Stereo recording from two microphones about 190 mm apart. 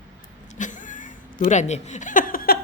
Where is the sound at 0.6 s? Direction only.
45° left (ahead or behind).